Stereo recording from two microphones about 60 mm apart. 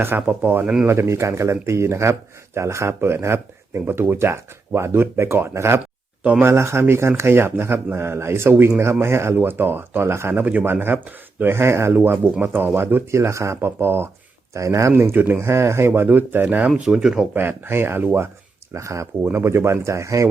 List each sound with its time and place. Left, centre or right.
0.2 s speech: right
0.6 s speech: centre
0.9 s speech: right
10.4 s speech: right
11.5 s speech: right
12.4 s speech: right
13.6 s speech: right
14.5 s speech: right
14.9 s speech: right
15.9 s speech: right; by 17.2 s centre
17.3 s speech: right
18.7 s speech: right
19.2 s speech: right